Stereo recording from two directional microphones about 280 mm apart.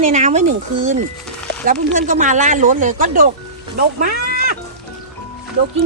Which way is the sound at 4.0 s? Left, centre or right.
Right.